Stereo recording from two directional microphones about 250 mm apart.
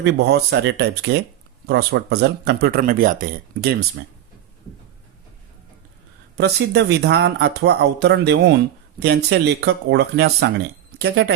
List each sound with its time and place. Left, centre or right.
0.0 s speech: right
6.3 s speech: right